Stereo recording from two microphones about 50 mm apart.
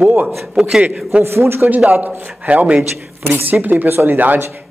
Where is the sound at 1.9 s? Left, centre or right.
Right.